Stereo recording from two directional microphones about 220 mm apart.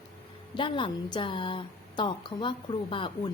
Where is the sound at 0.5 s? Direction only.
20° left (ahead or behind).